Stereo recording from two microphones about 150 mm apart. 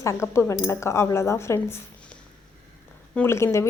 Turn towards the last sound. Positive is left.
turn(degrees=20)  # may be behind; listen again after turning